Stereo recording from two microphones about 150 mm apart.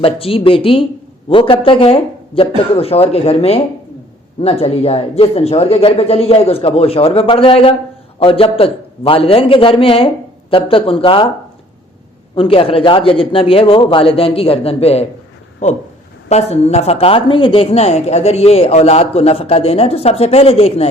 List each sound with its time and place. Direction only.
0.0 s speech: 40° left (ahead or behind)
12.3 s speech: 35° left (ahead or behind)